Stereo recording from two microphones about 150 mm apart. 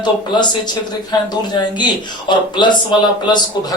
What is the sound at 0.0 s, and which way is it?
Speech, 30° left (ahead or behind).